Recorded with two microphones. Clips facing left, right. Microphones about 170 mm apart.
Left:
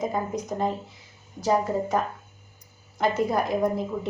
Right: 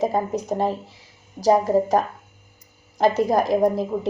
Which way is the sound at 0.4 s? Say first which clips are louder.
Right 4 dB; 30° right (ahead or behind).